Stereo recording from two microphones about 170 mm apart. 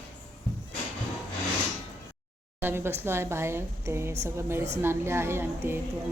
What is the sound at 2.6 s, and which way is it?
A woman's voice, 15° right (ahead or behind).